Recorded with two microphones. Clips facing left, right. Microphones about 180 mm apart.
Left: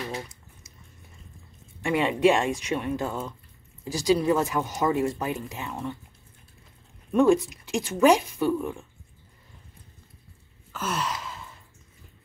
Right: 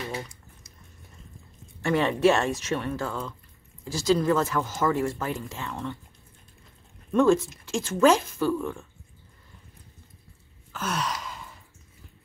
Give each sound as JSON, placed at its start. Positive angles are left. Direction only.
{"t": 1.8, "sound": "speech", "side_deg": 10}
{"t": 7.1, "sound": "speech", "side_deg": 15}
{"t": 10.7, "sound": "gasp", "side_deg": 5}